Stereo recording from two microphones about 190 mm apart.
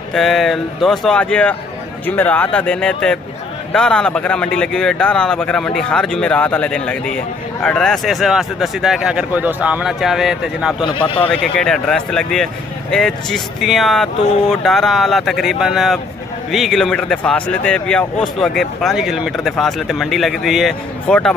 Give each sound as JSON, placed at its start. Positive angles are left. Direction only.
{"t": 0.1, "sound": "speech", "side_deg": 0}
{"t": 10.8, "sound": "a man's voice", "side_deg": 25}
{"t": 11.1, "sound": "speech", "side_deg": 5}